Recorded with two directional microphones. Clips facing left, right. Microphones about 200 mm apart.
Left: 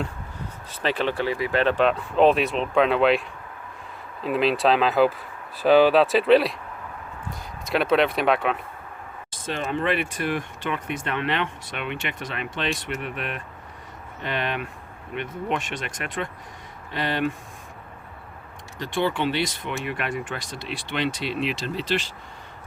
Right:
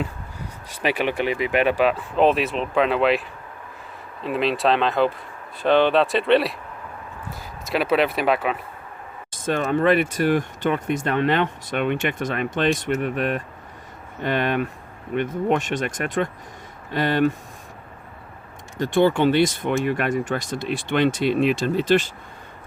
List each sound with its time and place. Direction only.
0.7 s speech: 10° right (ahead or behind)
9.3 s speech: 50° right (ahead or behind)
18.8 s speech: 45° right (ahead or behind)